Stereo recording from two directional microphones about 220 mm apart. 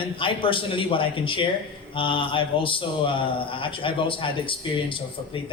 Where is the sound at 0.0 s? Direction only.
25° left (ahead or behind).